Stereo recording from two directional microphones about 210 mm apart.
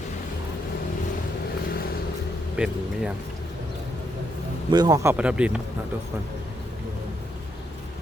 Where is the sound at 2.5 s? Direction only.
5° right (ahead or behind).